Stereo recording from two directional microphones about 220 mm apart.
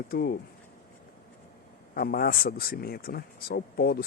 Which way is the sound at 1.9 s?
40° left (ahead or behind).